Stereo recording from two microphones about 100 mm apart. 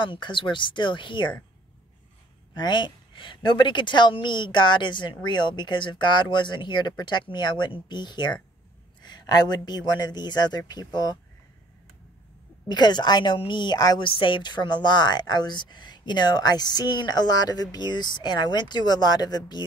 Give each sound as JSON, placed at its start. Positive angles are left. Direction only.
{"t": 0.0, "sound": "a woman's voice", "side_deg": 55}
{"t": 2.5, "sound": "a woman's voice", "side_deg": 50}
{"t": 12.6, "sound": "a woman's voice", "side_deg": 45}
{"t": 14.0, "sound": "a woman's voice", "side_deg": 60}